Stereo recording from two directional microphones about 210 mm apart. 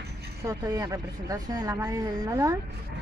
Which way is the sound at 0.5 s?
15° right (ahead or behind).